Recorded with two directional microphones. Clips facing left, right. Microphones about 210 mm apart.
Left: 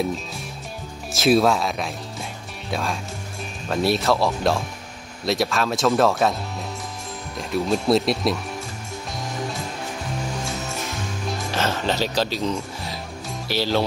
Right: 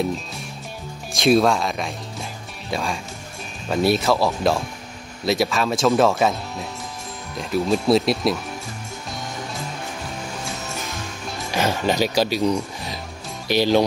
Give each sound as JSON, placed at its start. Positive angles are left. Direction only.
{"t": 1.1, "sound": "speech", "side_deg": 0}
{"t": 7.3, "sound": "speech", "side_deg": 0}
{"t": 11.5, "sound": "speech", "side_deg": -15}